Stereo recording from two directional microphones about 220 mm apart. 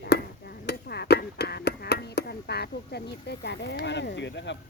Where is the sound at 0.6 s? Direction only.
45° left (ahead or behind).